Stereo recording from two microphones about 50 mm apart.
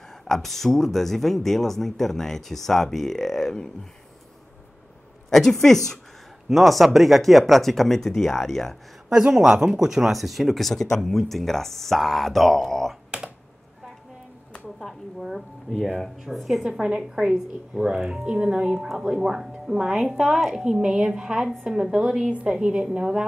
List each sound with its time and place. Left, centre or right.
0.3 s speech: centre
5.3 s speech: centre
6.5 s speech: centre
9.4 s speech: centre
13.1 s computer keyboard: right
14.8 s speech: centre
16.3 s speech: centre
16.6 s speech: centre
20.7 s speech: centre